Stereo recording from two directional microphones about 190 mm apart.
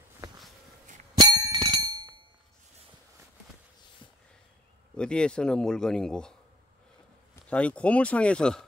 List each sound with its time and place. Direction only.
1.2 s bicycle bell: 20° right (ahead or behind)
4.9 s a man's voice: 5° left (ahead or behind)
7.4 s speech: 5° left (ahead or behind)